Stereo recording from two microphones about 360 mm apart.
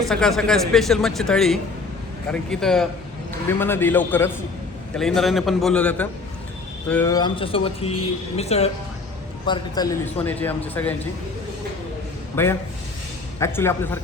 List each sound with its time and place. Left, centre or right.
0.1 s speech: centre
12.4 s speech: centre